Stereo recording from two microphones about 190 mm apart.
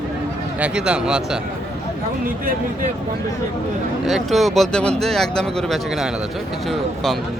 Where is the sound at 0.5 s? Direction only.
5° right (ahead or behind).